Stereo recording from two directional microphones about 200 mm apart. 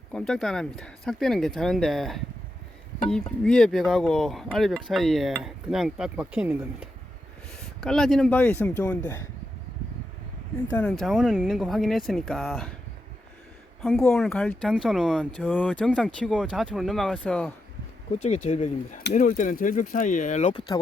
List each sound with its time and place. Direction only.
0.1 s speech: 5° left (ahead or behind)
3.4 s speech: 5° left (ahead or behind)
10.7 s speech: 5° left (ahead or behind)
14.0 s speech: 5° left (ahead or behind)
18.2 s speech: 35° left (ahead or behind)